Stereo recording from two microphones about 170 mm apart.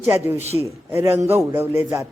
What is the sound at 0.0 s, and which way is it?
A man's voice, 10° right (ahead or behind).